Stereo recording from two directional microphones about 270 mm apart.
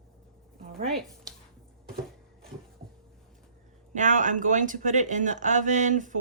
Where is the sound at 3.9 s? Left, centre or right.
Right.